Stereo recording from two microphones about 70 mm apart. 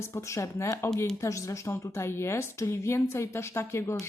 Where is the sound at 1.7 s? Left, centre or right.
Left.